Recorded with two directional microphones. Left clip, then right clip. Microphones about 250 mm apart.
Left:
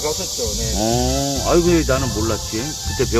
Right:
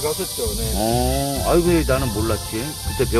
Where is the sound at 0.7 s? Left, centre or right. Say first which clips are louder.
Left 1 dB; centre.